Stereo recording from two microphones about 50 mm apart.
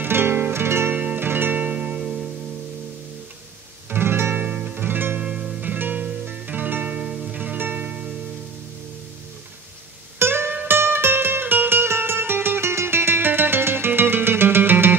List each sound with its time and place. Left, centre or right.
0.0 s music: right
0.9 s music: right
1.6 s music: right
3.9 s music: right
4.5 s music: right
5.2 s music: centre
5.6 s music: right
7.0 s music: centre
7.3 s music: right
7.9 s music: right
10.1 s music: right